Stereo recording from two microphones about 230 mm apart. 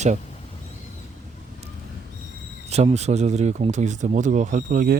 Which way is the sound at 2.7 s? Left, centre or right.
Right.